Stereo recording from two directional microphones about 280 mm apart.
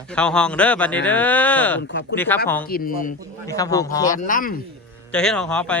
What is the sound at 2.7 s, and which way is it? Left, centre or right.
Speech, left.